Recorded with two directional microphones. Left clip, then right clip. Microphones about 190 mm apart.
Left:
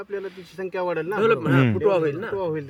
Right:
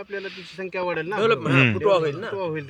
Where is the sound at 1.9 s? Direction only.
30° left (ahead or behind).